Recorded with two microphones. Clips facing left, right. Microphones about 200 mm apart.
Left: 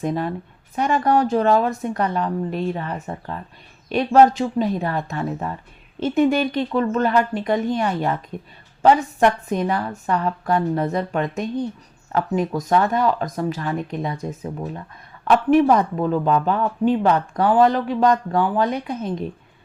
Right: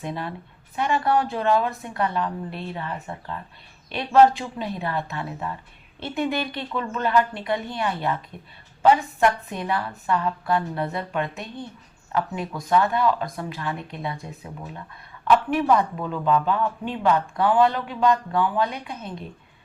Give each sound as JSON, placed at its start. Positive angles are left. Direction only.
{"t": 0.0, "sound": "speech", "side_deg": 45}
{"t": 9.5, "sound": "speech", "side_deg": 40}
{"t": 15.4, "sound": "speech", "side_deg": 40}